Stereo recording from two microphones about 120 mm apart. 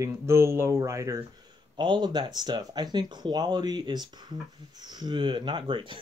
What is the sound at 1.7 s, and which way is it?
Speech, 40° right (ahead or behind).